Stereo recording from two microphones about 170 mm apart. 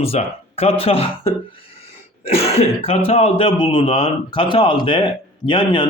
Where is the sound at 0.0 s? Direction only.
35° left (ahead or behind).